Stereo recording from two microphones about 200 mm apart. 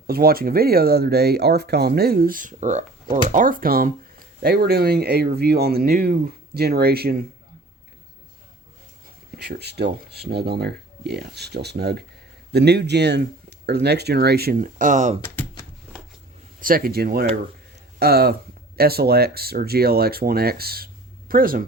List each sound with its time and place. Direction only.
0.1 s speech: 50° right (ahead or behind)
9.3 s speech: 55° right (ahead or behind); by 15.2 s 35° right (ahead or behind)
15.2 s a sound: 10° left (ahead or behind)
16.6 s speech: 45° right (ahead or behind)